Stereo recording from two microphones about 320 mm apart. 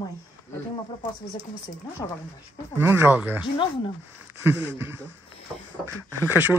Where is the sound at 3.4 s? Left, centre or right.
Centre.